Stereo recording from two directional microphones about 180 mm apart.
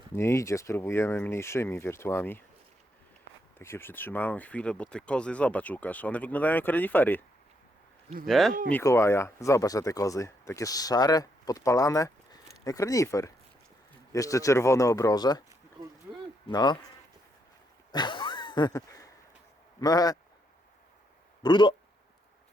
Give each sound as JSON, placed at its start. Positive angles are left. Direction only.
{"t": 0.1, "sound": "speech", "side_deg": 15}
{"t": 3.6, "sound": "speech", "side_deg": 15}
{"t": 8.3, "sound": "speech", "side_deg": 0}
{"t": 8.7, "sound": "speech", "side_deg": 15}
{"t": 16.5, "sound": "speech", "side_deg": 20}
{"t": 17.9, "sound": "a sound", "side_deg": 25}
{"t": 19.8, "sound": "speech", "side_deg": 20}
{"t": 21.4, "sound": "speech", "side_deg": 25}